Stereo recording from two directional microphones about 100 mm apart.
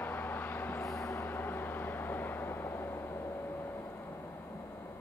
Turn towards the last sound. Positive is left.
turn(degrees=25)  # may be behind; listen again after turning